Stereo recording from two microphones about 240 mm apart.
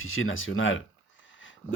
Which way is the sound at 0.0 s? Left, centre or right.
Left.